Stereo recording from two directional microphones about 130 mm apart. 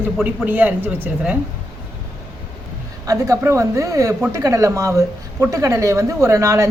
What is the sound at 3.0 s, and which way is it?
Speech, 25° right (ahead or behind).